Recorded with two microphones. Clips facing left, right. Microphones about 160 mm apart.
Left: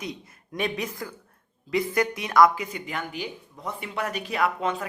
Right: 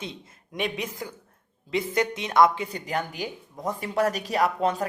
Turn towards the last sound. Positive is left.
turn(degrees=-40)  # may be behind; listen again after turning